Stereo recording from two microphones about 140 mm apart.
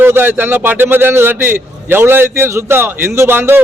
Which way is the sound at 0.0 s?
15° right (ahead or behind).